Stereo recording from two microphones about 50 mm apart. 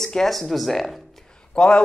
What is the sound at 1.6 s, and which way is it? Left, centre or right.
Speech, centre.